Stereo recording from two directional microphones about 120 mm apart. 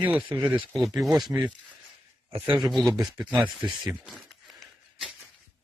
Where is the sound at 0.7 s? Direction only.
Centre (ahead or behind).